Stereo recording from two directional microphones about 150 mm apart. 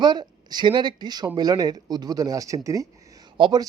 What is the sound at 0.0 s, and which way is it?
Speech, 30° right (ahead or behind).